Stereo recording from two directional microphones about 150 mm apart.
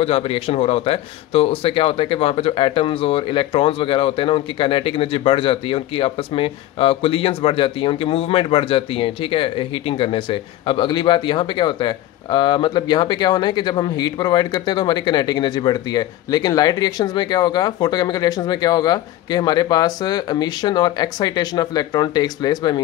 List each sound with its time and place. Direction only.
0.0 s speech: 40° left (ahead or behind)